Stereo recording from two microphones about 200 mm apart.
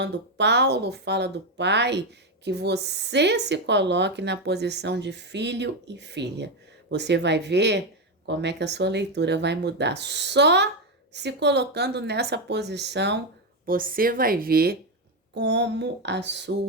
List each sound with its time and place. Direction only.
0.0 s speech: 60° right (ahead or behind)
13.7 s speech: 45° right (ahead or behind)